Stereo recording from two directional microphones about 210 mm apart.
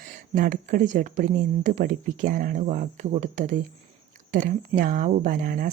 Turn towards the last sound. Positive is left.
turn(degrees=-40)  # may be behind; listen again after turning